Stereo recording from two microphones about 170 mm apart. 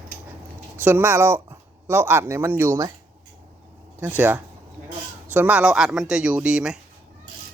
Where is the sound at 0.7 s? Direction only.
10° right (ahead or behind).